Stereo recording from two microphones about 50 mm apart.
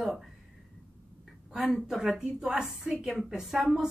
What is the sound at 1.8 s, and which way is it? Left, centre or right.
Speech, centre.